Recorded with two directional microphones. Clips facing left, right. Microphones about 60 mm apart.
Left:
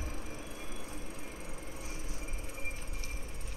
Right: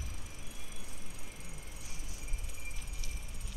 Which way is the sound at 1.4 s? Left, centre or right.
Left.